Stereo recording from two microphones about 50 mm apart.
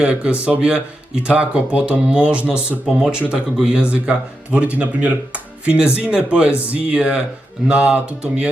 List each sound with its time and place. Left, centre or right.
0.0 s a man's voice: right